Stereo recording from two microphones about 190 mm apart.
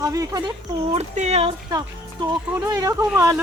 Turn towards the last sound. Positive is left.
turn(degrees=-15)  # may be behind; listen again after turning